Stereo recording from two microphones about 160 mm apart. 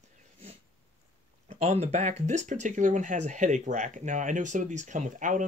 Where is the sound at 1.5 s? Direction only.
45° right (ahead or behind).